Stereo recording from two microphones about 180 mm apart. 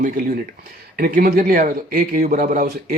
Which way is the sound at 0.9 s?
50° right (ahead or behind).